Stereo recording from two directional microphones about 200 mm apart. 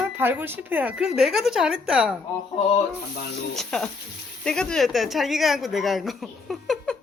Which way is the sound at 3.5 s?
Centre (ahead or behind).